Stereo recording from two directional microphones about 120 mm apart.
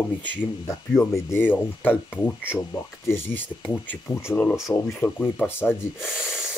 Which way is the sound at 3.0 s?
20° left (ahead or behind).